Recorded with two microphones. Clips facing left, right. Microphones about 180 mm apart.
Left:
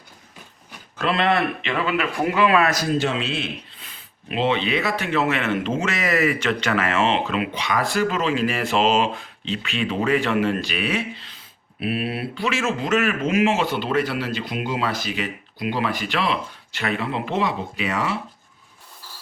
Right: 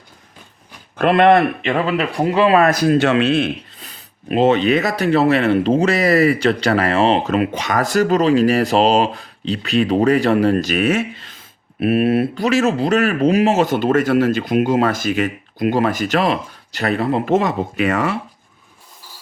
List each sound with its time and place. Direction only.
0.9 s speech: 55° right (ahead or behind); by 2.6 s 35° right (ahead or behind)
2.6 s speech: 60° right (ahead or behind)
3.8 s speech: 40° right (ahead or behind)